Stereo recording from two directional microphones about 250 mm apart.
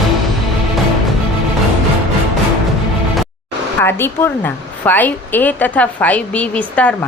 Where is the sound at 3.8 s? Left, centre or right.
Centre.